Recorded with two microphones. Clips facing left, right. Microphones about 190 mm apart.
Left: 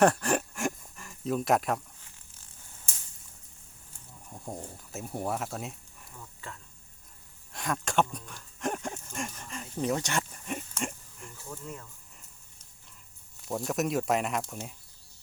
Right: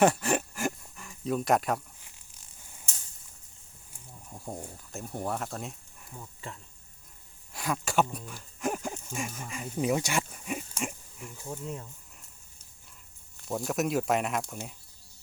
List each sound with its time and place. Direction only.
0.0 s a sound: 5° right (ahead or behind)
2.0 s zipper: 15° right (ahead or behind)
4.3 s a sound: centre (ahead or behind)
4.9 s speech: 5° left (ahead or behind)
6.1 s speech: 20° right (ahead or behind)
7.5 s speech: 5° right (ahead or behind)
11.3 s speech: 20° right (ahead or behind)
13.5 s speech: centre (ahead or behind)